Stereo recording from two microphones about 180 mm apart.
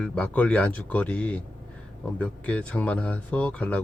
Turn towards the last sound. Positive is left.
turn(degrees=10)  # may be behind; listen again after turning